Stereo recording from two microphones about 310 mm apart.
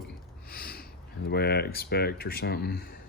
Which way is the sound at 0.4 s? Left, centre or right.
Left.